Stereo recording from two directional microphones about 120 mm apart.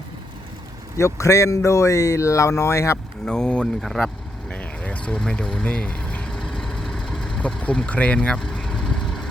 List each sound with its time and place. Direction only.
0.9 s speech: 25° left (ahead or behind)
3.2 s vehicle: 5° left (ahead or behind)